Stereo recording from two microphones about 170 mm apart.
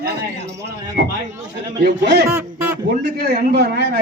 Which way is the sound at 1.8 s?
90° right.